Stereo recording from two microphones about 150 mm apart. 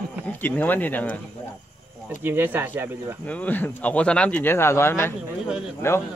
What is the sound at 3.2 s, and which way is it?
Speech, 10° left (ahead or behind).